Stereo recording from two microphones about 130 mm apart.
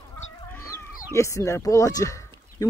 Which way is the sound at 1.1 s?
25° left (ahead or behind).